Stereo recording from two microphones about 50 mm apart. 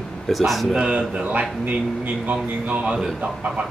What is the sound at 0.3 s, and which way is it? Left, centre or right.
Speech, centre.